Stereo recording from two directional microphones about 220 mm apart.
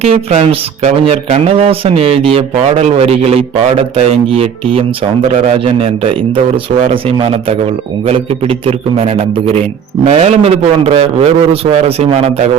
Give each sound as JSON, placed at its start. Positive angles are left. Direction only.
{"t": 0.0, "sound": "speech", "side_deg": -30}
{"t": 10.1, "sound": "speech", "side_deg": -30}